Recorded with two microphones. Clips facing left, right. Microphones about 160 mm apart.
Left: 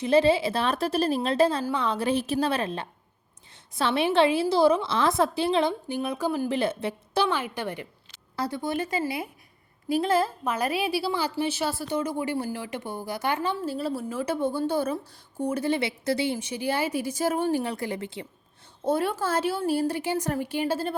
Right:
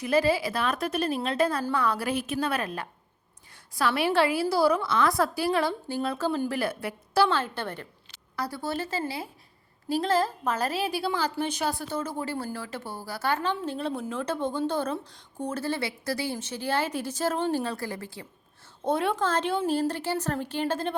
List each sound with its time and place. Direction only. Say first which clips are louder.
0.0 s a woman's voice: left 3 dB; 25° left (ahead or behind); by 11.9 s 5° left (ahead or behind)
11.9 s a woman's voice: left 4 dB; 15° left (ahead or behind)
18.9 s a woman's voice: left 1 dB; 5° left (ahead or behind)